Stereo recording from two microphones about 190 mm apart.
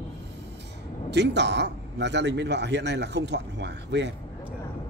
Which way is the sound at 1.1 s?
65° right (ahead or behind).